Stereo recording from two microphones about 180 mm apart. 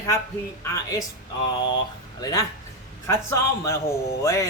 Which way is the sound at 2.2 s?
20° left (ahead or behind).